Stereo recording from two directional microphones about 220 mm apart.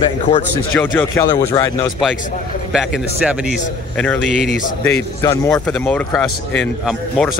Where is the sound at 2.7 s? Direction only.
5° right (ahead or behind).